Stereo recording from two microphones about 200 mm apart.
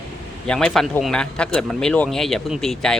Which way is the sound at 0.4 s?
5° left (ahead or behind).